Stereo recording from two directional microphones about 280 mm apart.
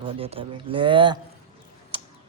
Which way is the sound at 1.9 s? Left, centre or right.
Centre.